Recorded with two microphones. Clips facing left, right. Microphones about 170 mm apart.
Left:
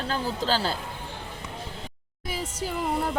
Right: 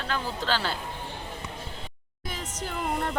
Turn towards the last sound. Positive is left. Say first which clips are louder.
# left 2 dB
turn(degrees=10)  # may be behind; listen again after turning